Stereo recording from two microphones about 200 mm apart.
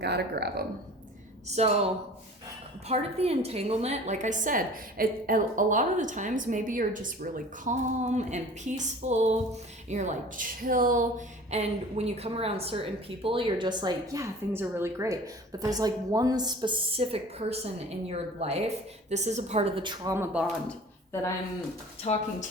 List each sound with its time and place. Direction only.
0.0 s speech: 55° right (ahead or behind)
1.5 s a woman's voice: 30° right (ahead or behind)
11.5 s a woman's voice: 30° right (ahead or behind)
20.1 s speech: 10° right (ahead or behind)
20.7 s a sound: 15° left (ahead or behind)
22.0 s speech: 35° left (ahead or behind)